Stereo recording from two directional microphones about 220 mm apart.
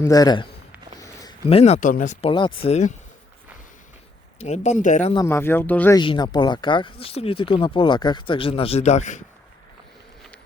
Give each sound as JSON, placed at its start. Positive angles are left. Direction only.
{"t": 0.0, "sound": "speech", "side_deg": 15}
{"t": 2.3, "sound": "speech", "side_deg": 20}
{"t": 4.4, "sound": "speech", "side_deg": 30}
{"t": 5.1, "sound": "speech", "side_deg": 10}
{"t": 6.0, "sound": "speech", "side_deg": 20}